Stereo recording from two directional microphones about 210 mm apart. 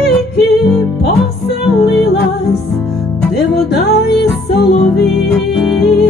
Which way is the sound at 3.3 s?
50° left (ahead or behind).